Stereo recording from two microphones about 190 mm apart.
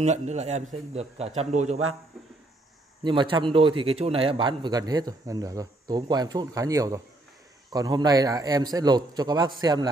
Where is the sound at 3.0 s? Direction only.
25° right (ahead or behind).